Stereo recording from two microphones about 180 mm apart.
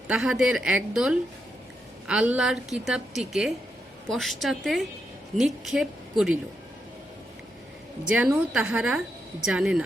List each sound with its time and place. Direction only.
0.1 s a woman's voice: 5° right (ahead or behind)
8.1 s a woman's voice: 5° right (ahead or behind)